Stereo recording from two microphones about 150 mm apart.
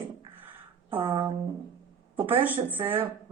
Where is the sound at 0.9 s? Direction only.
30° right (ahead or behind).